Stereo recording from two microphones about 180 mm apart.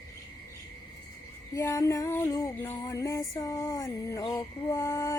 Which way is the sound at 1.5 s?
15° left (ahead or behind).